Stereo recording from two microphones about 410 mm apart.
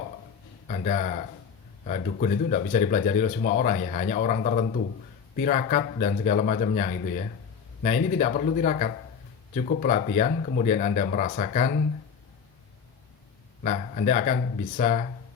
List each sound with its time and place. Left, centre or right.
0.7 s speech: centre
13.6 s speech: centre